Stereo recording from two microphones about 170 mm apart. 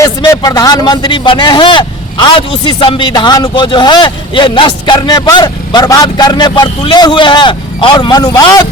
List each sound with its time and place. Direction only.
0.0 s a man's voice: 20° left (ahead or behind)